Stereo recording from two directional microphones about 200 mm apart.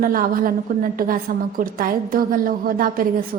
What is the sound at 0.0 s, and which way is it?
A woman's voice, 45° right (ahead or behind).